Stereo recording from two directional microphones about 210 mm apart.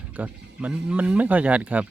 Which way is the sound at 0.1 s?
5° right (ahead or behind).